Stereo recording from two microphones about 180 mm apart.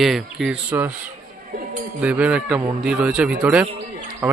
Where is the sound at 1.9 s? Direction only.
5° right (ahead or behind).